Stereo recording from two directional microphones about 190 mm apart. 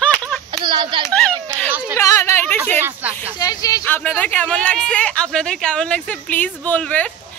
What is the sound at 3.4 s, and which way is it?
Speech, 20° left (ahead or behind).